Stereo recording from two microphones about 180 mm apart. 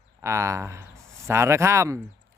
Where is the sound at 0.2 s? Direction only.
15° right (ahead or behind).